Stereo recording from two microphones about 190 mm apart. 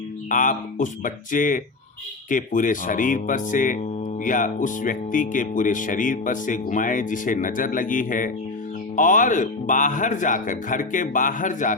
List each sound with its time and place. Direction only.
0.3 s speech: 45° left (ahead or behind)